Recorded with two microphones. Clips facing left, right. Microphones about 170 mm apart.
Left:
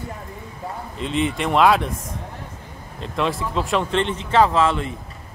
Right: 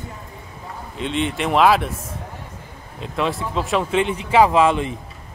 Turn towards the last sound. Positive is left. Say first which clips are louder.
# right 3 dB
turn(degrees=-15)  # may be behind; listen again after turning